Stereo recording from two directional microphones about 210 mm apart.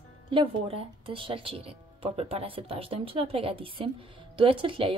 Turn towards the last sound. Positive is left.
turn(degrees=-25)  # may be behind; listen again after turning